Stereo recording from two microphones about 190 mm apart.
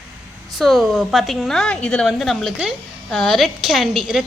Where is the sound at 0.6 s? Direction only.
Centre (ahead or behind).